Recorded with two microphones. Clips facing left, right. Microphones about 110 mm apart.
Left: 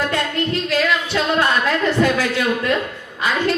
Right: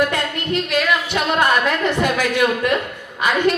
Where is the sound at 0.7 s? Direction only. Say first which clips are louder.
Even; 15° right (ahead or behind).